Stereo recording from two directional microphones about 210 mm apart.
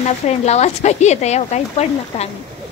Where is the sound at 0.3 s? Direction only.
30° left (ahead or behind).